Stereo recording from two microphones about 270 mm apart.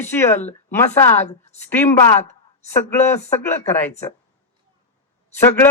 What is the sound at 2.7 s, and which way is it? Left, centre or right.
Speech, centre.